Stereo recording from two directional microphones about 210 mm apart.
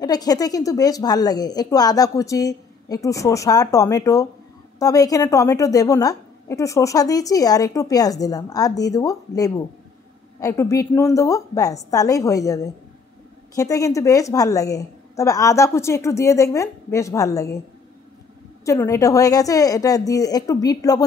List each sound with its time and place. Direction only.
0.0 s a woman's voice: 20° left (ahead or behind)
13.6 s a woman's voice: 15° left (ahead or behind)
18.7 s a woman's voice: 15° left (ahead or behind)